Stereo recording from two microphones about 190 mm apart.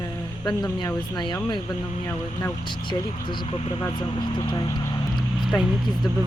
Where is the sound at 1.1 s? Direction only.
25° left (ahead or behind).